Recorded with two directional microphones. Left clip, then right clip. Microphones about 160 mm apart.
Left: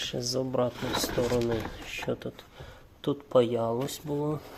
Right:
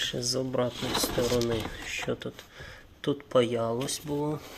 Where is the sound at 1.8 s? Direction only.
Centre (ahead or behind).